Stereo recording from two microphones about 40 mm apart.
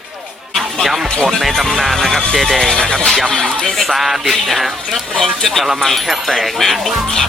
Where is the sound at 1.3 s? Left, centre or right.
Centre.